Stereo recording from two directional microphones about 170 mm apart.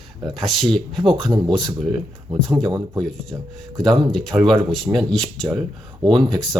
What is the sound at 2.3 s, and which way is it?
Speech, centre (ahead or behind).